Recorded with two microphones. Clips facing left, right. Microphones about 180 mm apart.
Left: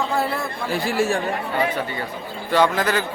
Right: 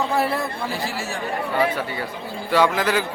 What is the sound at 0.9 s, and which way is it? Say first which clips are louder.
Speech: left 9 dB; 55° left (ahead or behind).